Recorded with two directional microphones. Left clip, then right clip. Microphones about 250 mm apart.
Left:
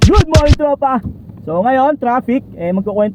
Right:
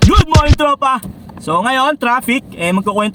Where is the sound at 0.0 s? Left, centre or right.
Centre.